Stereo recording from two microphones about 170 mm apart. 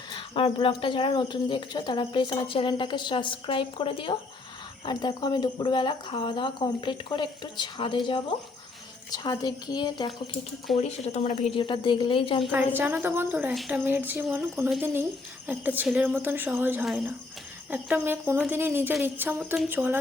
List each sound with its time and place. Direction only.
0.1 s speech: 30° left (ahead or behind)
10.8 s speech: 40° left (ahead or behind)
12.4 s a woman's voice: centre (ahead or behind)